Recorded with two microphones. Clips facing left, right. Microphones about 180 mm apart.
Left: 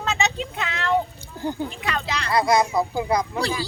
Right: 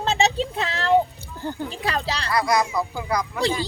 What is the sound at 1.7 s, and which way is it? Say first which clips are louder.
Speech: right 2 dB; 35° right (ahead or behind).